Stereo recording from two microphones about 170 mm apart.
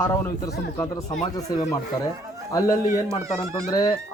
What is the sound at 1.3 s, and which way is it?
Speech, 20° left (ahead or behind).